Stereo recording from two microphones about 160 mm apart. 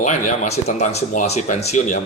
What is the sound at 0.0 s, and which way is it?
Speech, 50° left (ahead or behind).